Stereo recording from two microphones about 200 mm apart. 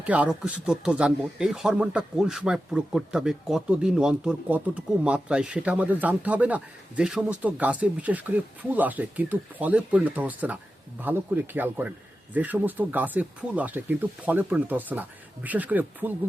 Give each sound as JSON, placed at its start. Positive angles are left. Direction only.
{"t": 0.0, "sound": "speech", "side_deg": -5}